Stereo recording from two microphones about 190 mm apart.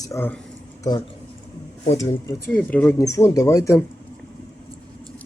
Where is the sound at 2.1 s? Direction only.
10° left (ahead or behind).